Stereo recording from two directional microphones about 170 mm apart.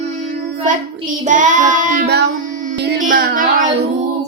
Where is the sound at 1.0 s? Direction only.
45° right (ahead or behind).